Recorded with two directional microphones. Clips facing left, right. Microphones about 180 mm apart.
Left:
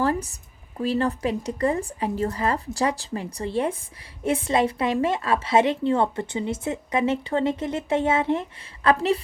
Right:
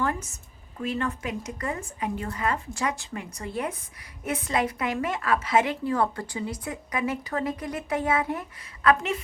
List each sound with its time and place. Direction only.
0.0 s a woman's voice: 35° left (ahead or behind)